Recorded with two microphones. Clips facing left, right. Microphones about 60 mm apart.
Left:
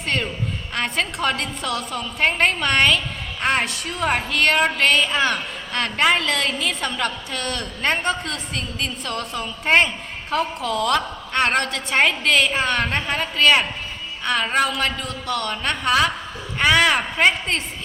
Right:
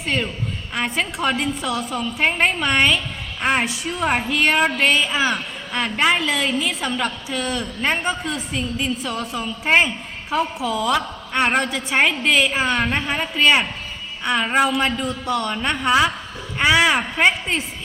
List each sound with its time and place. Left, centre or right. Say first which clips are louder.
0.0 s a woman's voice: right 1 dB; centre